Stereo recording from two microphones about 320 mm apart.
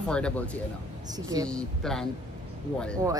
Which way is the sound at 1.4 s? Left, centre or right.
Centre.